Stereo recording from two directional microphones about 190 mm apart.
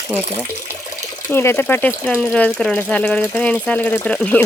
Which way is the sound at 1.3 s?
10° left (ahead or behind).